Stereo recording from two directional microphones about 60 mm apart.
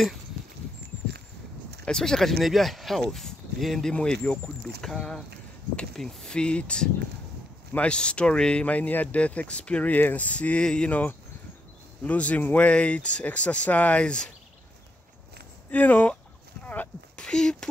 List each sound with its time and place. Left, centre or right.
1.9 s speech: centre
3.9 s speech: centre
15.7 s speech: left
16.6 s walk: left
17.2 s a sound: centre